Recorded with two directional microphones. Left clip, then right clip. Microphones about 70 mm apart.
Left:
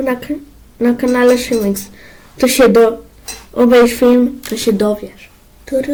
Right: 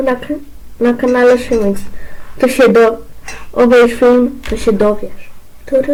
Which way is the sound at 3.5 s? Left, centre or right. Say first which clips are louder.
Right 2 dB; left.